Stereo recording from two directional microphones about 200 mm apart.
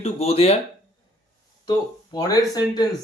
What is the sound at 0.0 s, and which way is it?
Speech, 30° left (ahead or behind).